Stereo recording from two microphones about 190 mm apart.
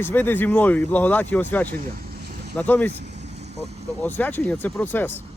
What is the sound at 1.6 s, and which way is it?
Boat, 50° right (ahead or behind).